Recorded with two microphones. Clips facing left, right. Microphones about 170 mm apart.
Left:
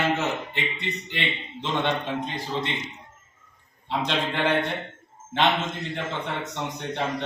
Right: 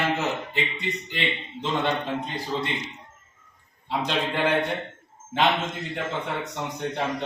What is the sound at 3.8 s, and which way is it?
Speech, 5° right (ahead or behind).